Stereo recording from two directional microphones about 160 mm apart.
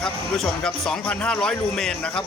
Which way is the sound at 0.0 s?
5° left (ahead or behind).